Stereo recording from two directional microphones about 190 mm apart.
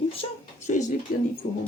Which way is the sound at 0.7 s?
40° left (ahead or behind).